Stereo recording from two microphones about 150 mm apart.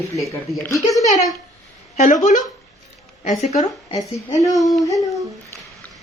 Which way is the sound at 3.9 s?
25° left (ahead or behind).